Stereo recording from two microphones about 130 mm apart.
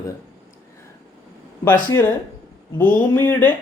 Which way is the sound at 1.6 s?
20° left (ahead or behind).